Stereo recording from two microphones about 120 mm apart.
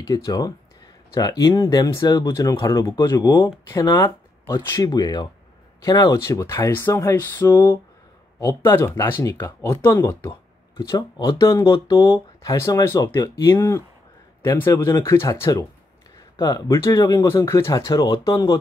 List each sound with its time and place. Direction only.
0.0 s speech: 30° left (ahead or behind)